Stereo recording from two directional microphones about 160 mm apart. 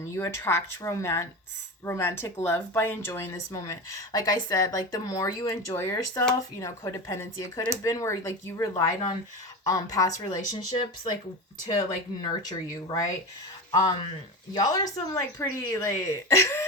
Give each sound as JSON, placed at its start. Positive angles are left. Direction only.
{"t": 0.0, "sound": "speech", "side_deg": 15}
{"t": 11.7, "sound": "speech", "side_deg": 25}